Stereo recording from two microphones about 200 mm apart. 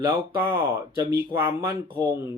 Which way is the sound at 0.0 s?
15° right (ahead or behind).